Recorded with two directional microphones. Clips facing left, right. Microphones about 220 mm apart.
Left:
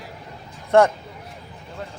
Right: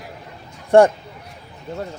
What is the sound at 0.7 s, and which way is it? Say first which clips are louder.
Speech: right 4 dB; 30° right (ahead or behind).